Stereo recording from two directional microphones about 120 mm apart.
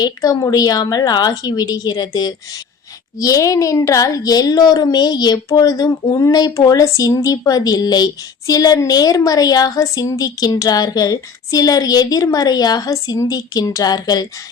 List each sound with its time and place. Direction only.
0.0 s speech: 30° left (ahead or behind)